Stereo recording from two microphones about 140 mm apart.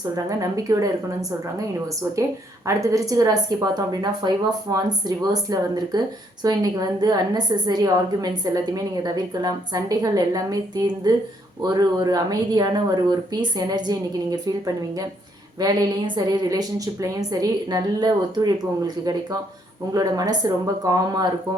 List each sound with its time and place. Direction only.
0.0 s a woman's voice: 25° right (ahead or behind)
2.6 s a woman's voice: 25° right (ahead or behind)
15.6 s a woman's voice: 30° right (ahead or behind)